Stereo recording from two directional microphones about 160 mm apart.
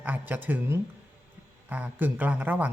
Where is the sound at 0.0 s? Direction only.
10° right (ahead or behind).